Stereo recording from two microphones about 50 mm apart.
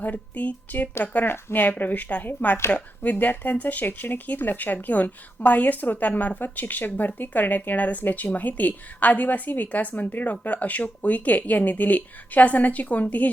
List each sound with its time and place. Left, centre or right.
0.0 s speech: left
1.8 s speech: left